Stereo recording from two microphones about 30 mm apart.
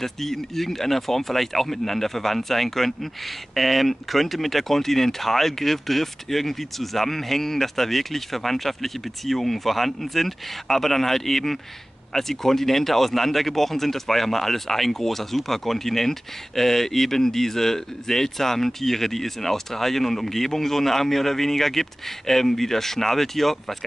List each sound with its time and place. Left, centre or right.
0.0 s speech: centre